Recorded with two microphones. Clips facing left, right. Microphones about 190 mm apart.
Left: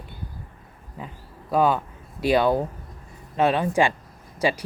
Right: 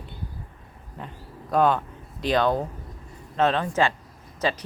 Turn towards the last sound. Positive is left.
turn(degrees=10)  # may be behind; listen again after turning